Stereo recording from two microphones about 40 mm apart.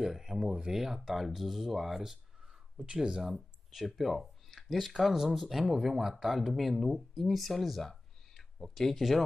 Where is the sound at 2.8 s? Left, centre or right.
Right.